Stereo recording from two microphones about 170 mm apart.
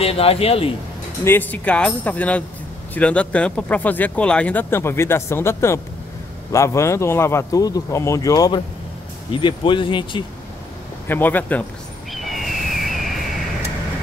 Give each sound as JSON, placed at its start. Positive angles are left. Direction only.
{"t": 0.0, "sound": "speech", "side_deg": 35}
{"t": 1.2, "sound": "speech", "side_deg": 10}
{"t": 11.1, "sound": "speech", "side_deg": 10}
{"t": 12.1, "sound": "a sound", "side_deg": 0}